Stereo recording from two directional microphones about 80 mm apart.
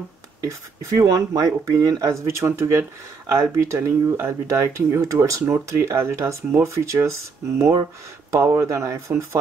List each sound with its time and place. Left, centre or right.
0.8 s speech: right